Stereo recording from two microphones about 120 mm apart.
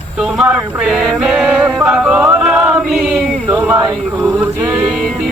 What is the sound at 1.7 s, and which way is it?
Music, 5° right (ahead or behind).